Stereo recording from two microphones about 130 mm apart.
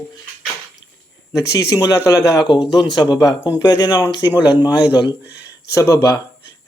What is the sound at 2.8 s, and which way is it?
Speech, 35° left (ahead or behind).